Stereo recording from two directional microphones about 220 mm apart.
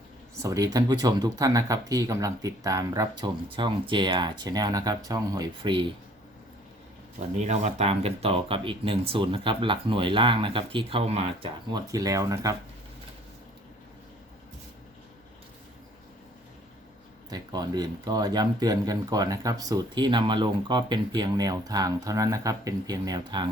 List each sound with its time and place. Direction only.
0.4 s speech: 15° right (ahead or behind)
7.3 s speech: 30° right (ahead or behind)
11.9 s speech: 15° right (ahead or behind)
17.2 s speech: 20° right (ahead or behind)